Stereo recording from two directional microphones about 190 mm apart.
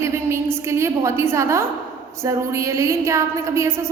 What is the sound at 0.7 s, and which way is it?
A woman's voice, 15° right (ahead or behind).